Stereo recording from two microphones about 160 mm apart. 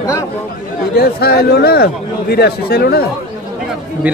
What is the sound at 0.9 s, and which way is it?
A man's voice, 75° left (ahead or behind).